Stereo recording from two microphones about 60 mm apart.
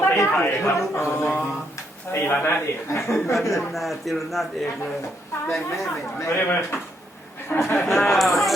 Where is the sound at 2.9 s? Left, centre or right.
Left.